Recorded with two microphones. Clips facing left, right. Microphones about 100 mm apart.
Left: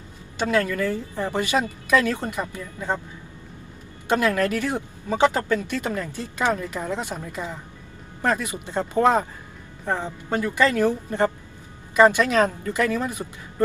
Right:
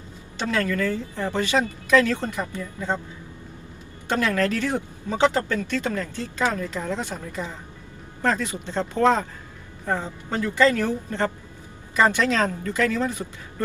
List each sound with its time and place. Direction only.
0.3 s speech: 15° left (ahead or behind)
4.1 s speech: 15° left (ahead or behind)